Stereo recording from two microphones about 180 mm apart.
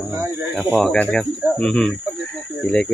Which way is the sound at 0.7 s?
5° left (ahead or behind).